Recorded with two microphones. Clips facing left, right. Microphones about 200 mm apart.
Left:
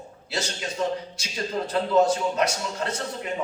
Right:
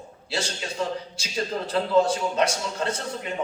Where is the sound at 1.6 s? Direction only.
30° right (ahead or behind).